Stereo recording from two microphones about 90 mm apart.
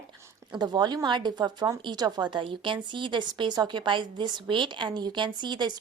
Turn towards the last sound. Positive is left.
turn(degrees=-55)  # may be behind; listen again after turning